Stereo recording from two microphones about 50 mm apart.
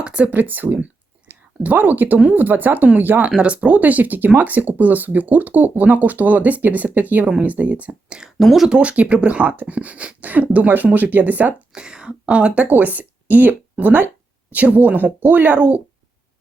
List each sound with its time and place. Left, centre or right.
0.0 s speech: right
0.3 s speech: right
3.2 s speech: right
8.4 s speech: centre
8.7 s speech: right
11.7 s speech: centre
12.6 s speech: right